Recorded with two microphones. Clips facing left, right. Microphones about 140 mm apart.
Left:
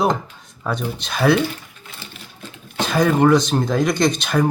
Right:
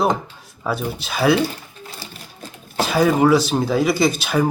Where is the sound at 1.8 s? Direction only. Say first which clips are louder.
Right 3 dB; 35° right (ahead or behind).